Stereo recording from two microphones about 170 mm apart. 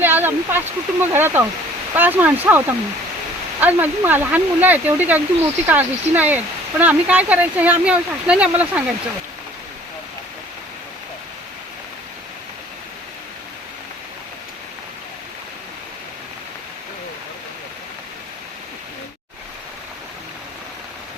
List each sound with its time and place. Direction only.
0.0 s speech: 10° right (ahead or behind)